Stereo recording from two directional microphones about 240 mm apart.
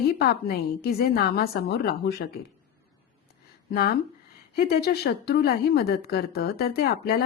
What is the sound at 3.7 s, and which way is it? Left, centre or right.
Speech, left.